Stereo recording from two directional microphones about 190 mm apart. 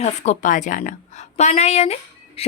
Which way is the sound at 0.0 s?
35° left (ahead or behind).